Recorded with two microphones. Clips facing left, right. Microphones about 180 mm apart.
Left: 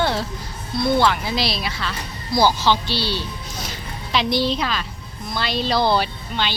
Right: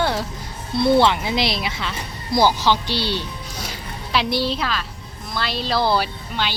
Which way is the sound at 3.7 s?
5° right (ahead or behind).